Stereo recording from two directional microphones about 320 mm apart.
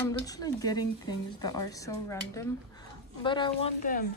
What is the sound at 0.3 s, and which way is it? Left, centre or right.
Speech, centre.